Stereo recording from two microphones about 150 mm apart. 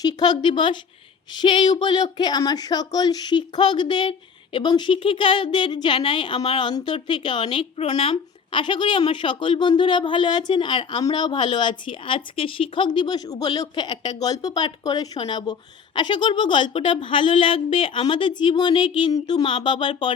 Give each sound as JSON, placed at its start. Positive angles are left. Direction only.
{"t": 0.0, "sound": "a woman's voice", "side_deg": 30}